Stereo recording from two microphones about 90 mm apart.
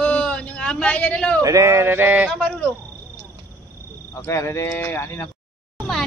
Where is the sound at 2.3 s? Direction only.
10° left (ahead or behind).